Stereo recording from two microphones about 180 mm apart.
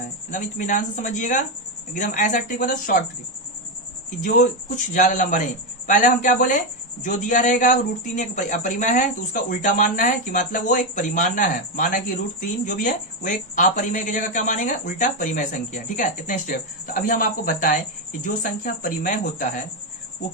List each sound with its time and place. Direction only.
0.3 s speech: 45° left (ahead or behind)
4.2 s speech: 45° left (ahead or behind)